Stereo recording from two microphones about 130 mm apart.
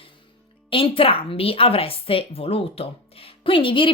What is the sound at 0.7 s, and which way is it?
Speech, 45° left (ahead or behind).